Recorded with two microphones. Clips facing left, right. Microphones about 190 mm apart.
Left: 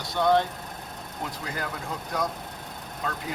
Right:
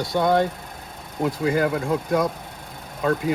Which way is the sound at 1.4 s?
55° right (ahead or behind).